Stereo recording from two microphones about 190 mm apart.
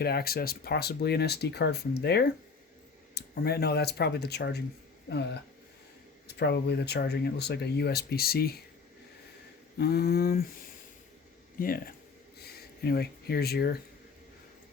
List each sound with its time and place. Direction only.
0.0 s speech: 55° left (ahead or behind)
9.7 s speech: 60° left (ahead or behind)
12.4 s a sound: 55° left (ahead or behind)